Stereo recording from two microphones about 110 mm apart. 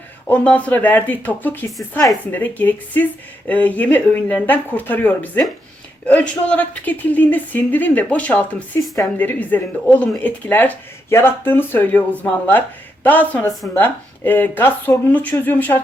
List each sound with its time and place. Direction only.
0.3 s speech: 15° left (ahead or behind)